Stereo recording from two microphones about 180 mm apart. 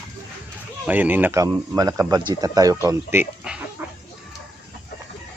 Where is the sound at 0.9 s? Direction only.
10° right (ahead or behind).